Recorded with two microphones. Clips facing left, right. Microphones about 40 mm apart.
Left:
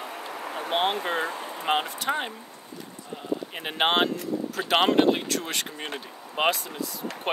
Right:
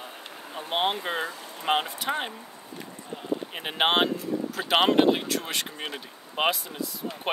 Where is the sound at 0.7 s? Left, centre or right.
Centre.